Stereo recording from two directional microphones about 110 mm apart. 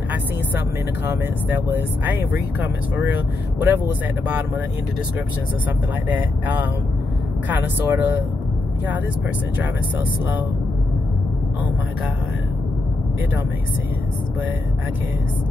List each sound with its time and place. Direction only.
1.0 s speech: 15° right (ahead or behind)
6.0 s speech: 15° right (ahead or behind)
9.6 s speech: 15° right (ahead or behind)